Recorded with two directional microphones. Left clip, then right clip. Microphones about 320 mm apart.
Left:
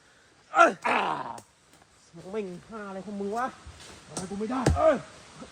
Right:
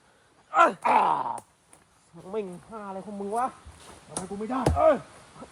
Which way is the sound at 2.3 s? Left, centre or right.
Centre.